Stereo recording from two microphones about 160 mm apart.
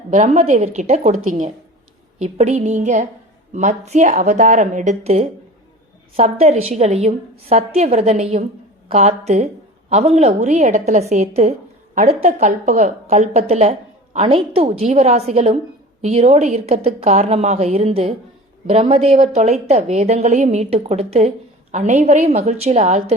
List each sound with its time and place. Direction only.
0.1 s a woman's voice: 50° right (ahead or behind)
2.1 s a woman's voice: 40° right (ahead or behind)